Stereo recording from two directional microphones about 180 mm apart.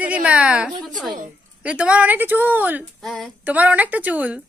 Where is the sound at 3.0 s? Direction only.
Centre (ahead or behind).